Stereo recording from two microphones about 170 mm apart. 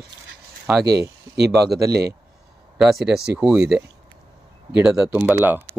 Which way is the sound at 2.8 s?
Centre (ahead or behind).